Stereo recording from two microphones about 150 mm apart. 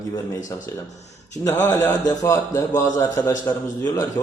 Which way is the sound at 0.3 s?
20° left (ahead or behind).